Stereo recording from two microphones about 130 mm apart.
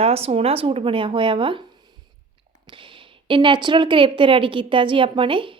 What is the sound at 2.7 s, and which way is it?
A woman's voice, 40° right (ahead or behind).